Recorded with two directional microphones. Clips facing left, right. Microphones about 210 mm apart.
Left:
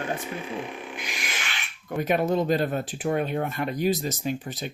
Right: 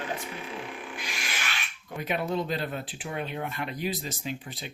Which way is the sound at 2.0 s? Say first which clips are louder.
Left 6 dB; 45° left (ahead or behind).